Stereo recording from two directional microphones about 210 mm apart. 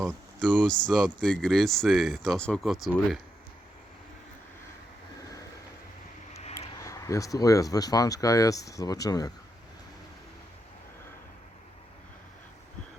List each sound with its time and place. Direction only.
0.7 s speech: 5° left (ahead or behind)
6.8 s speech: 15° left (ahead or behind)